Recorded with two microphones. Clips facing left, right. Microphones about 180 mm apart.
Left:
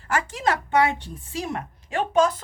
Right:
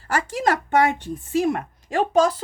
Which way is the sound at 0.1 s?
40° right (ahead or behind).